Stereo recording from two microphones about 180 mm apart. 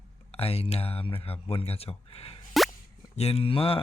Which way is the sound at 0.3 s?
35° left (ahead or behind).